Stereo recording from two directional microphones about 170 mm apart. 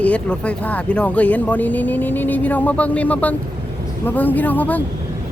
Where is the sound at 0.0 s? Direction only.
5° left (ahead or behind).